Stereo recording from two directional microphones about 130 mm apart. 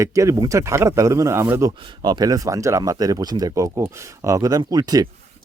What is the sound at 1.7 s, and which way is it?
Speech, 35° right (ahead or behind).